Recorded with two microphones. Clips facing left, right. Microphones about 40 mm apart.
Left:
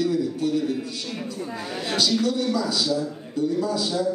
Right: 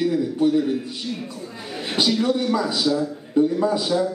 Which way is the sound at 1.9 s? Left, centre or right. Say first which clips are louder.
Right 2 dB; right.